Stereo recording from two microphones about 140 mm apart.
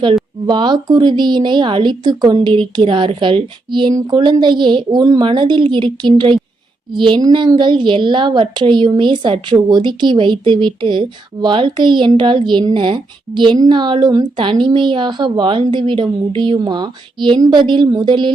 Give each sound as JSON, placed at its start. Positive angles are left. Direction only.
{"t": 0.0, "sound": "a woman's voice", "side_deg": -35}